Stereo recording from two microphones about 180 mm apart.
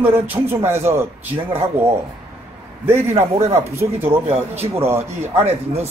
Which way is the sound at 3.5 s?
15° right (ahead or behind).